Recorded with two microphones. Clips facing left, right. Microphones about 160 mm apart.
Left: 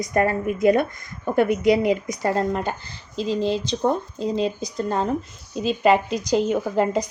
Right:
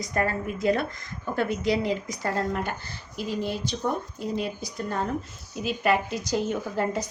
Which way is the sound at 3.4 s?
90° left.